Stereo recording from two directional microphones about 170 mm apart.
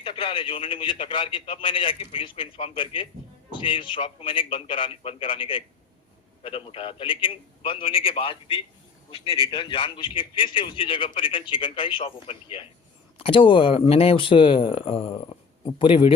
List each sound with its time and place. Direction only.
0.0 s a man's voice: 30° left (ahead or behind)